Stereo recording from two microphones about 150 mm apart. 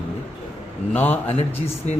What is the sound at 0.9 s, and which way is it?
Speech, 10° left (ahead or behind).